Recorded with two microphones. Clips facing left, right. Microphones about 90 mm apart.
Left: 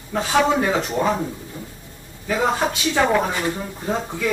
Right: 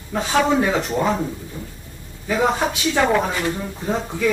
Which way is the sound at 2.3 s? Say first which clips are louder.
Right 1 dB; centre (ahead or behind).